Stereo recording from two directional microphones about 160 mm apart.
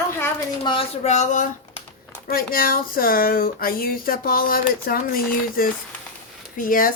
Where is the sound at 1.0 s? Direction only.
50° left (ahead or behind).